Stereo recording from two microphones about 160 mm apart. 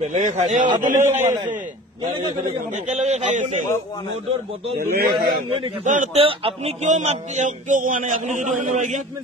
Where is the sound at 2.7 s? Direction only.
45° right (ahead or behind).